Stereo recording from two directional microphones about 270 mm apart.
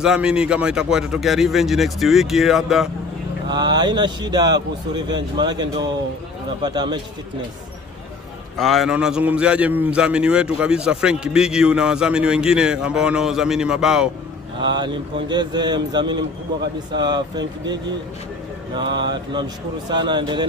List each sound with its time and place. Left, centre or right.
0.0 s a man's voice: centre
3.4 s a man's voice: centre
8.5 s a man's voice: centre
14.6 s a man's voice: centre
18.9 s mantra: right
19.3 s a man's voice: centre